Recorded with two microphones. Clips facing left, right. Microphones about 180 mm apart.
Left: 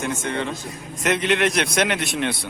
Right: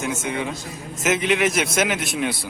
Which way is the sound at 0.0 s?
5° right (ahead or behind).